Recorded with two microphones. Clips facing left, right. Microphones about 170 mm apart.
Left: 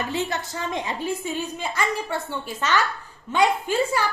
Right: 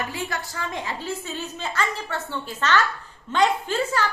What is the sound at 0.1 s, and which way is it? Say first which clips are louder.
A woman's voice: left 4 dB; 25° left (ahead or behind).